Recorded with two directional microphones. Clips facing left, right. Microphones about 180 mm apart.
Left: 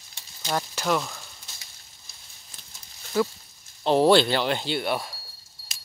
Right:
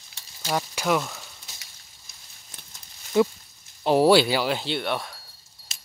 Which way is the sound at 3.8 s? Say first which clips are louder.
Right 1 dB; 10° right (ahead or behind).